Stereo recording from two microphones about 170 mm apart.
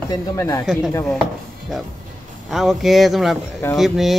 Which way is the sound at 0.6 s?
5° right (ahead or behind).